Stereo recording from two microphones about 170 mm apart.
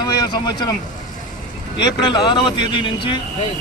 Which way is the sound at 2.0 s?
25° left (ahead or behind).